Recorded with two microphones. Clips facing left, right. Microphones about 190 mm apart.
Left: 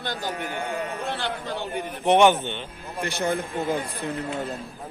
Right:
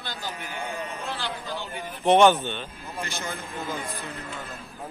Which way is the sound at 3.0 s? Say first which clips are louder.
Left 9 dB; 60° left (ahead or behind).